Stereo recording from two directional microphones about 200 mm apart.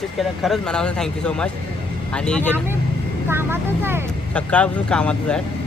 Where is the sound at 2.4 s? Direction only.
10° right (ahead or behind).